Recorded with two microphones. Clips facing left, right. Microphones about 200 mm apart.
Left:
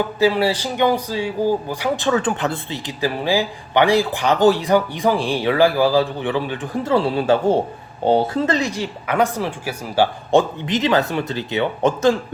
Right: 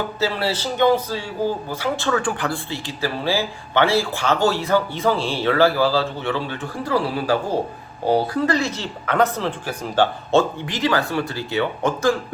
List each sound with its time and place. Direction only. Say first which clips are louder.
0.2 s speech: left 6 dB; 15° left (ahead or behind)